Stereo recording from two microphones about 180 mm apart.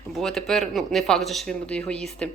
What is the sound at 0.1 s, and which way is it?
Speech, centre (ahead or behind).